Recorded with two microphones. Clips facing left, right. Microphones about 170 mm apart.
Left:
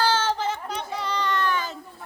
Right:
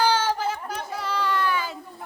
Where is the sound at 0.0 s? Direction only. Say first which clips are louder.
Right 1 dB; 10° right (ahead or behind).